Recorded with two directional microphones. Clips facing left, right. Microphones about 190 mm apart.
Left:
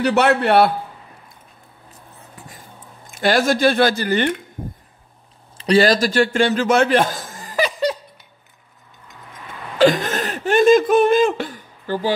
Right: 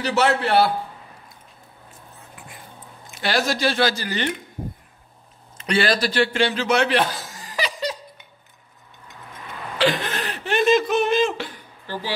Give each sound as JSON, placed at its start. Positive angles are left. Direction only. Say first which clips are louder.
{"t": 0.0, "sound": "a man's voice", "louder": "left 4 dB", "side_deg": 60}
{"t": 3.1, "sound": "speech", "louder": "left 6 dB", "side_deg": 50}
{"t": 5.6, "sound": "a man's voice", "louder": "left 6 dB", "side_deg": 40}
{"t": 9.8, "sound": "a sound", "louder": "left 7 dB", "side_deg": 45}